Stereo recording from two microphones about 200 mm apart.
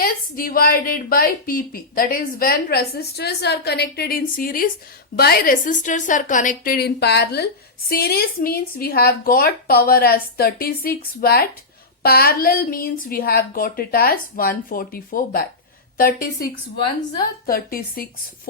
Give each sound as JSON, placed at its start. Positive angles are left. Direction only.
{"t": 0.0, "sound": "a woman's voice", "side_deg": 45}